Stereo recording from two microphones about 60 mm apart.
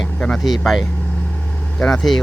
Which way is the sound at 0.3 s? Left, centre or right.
Centre.